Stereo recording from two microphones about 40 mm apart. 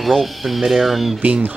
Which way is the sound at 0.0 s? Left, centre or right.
Centre.